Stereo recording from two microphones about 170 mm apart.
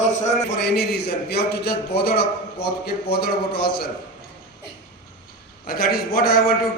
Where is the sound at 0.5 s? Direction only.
75° left (ahead or behind).